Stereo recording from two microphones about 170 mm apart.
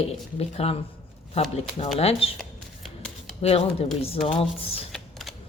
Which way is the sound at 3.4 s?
35° left (ahead or behind).